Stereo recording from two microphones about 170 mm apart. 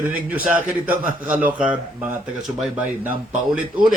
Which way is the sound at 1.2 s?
10° right (ahead or behind).